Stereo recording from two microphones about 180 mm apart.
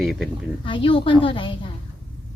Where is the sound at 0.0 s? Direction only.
Centre (ahead or behind).